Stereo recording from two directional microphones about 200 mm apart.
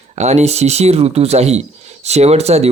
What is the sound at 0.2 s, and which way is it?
Speech, 35° right (ahead or behind).